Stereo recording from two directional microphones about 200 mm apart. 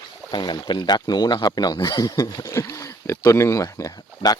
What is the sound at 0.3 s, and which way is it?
Speech, 20° left (ahead or behind).